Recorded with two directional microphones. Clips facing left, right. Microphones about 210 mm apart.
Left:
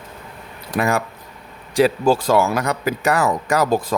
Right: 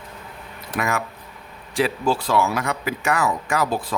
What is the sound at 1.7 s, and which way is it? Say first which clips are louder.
Speech: left 6 dB; 45° left (ahead or behind).